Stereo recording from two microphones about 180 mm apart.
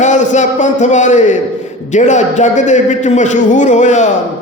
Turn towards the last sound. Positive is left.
turn(degrees=40)  # may be behind; listen again after turning